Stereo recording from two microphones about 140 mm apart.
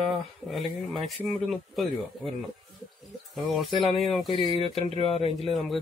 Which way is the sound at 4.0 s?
Centre (ahead or behind).